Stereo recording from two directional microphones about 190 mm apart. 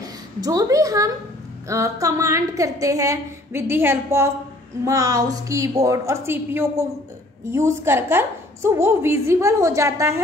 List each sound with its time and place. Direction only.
0.0 s a woman's voice: 20° right (ahead or behind)